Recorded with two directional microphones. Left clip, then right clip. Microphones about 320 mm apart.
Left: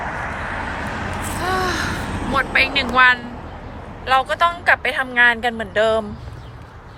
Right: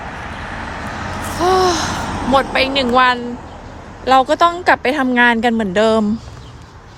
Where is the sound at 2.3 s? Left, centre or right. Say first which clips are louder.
Right 3 dB; centre.